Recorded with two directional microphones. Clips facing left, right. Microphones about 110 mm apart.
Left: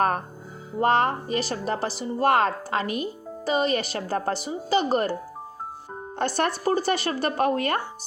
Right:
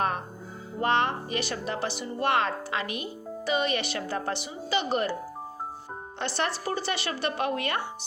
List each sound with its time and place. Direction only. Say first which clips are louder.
0.8 s a woman's voice: left 4 dB; 40° left (ahead or behind)
6.1 s speech: left 5 dB; 45° left (ahead or behind)